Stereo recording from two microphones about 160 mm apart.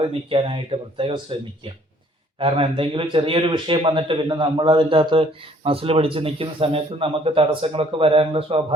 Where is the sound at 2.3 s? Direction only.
35° right (ahead or behind).